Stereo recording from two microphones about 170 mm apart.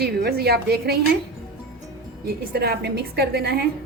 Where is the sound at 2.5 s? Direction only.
70° right (ahead or behind).